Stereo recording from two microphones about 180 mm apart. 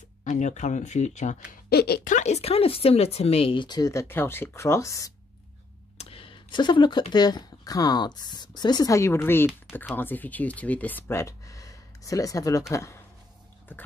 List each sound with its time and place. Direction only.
0.2 s speech: 40° left (ahead or behind)
1.7 s speech: 60° left (ahead or behind)
2.1 s speech: 35° left (ahead or behind); by 5.1 s 15° left (ahead or behind)
5.9 s speech: 30° left (ahead or behind); by 13.0 s 15° left (ahead or behind)